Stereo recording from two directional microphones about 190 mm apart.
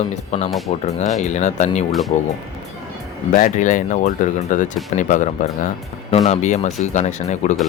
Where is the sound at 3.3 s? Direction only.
40° left (ahead or behind).